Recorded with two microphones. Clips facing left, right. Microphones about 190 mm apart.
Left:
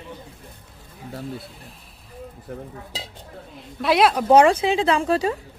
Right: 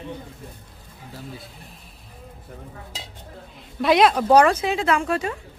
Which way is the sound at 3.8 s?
Centre (ahead or behind).